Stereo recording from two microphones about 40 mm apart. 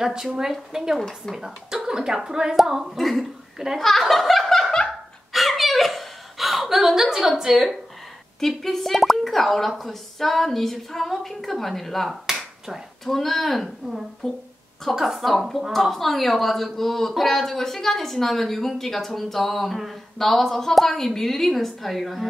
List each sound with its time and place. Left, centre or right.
0.0 s a woman's voice: centre
3.0 s speech: centre
3.5 s a child's voice: centre
3.8 s laughter: centre
5.3 s chuckle: centre
8.4 s speech: centre
12.3 s finger snapping: centre
13.0 s speech: centre
14.2 s speech: centre
15.0 s speech: centre